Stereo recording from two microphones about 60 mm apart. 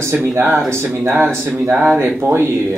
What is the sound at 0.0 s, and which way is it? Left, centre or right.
A man's voice, right.